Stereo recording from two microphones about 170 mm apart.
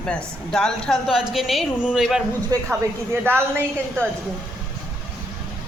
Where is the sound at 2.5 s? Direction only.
25° right (ahead or behind).